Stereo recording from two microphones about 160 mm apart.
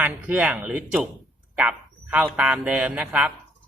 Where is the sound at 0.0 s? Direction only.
10° right (ahead or behind).